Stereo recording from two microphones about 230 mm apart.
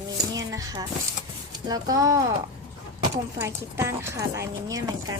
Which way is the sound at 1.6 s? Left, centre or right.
Centre.